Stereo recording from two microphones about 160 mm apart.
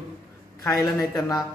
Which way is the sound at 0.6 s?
20° left (ahead or behind).